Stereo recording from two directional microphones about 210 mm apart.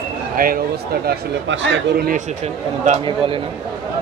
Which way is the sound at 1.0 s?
55° right (ahead or behind).